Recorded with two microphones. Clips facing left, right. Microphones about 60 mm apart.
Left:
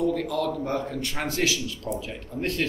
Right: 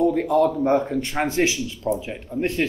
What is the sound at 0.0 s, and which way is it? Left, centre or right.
Speech, right.